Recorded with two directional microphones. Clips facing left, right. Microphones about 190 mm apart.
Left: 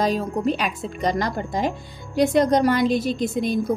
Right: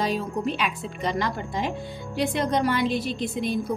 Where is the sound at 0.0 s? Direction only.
40° left (ahead or behind).